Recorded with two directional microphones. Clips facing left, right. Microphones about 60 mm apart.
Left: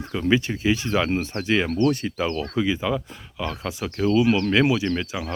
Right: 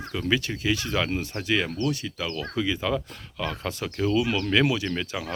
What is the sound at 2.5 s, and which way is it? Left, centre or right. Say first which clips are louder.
Speech: left 3 dB; centre.